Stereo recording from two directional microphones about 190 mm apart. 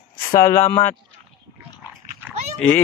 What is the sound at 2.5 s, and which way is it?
Speech, 10° left (ahead or behind).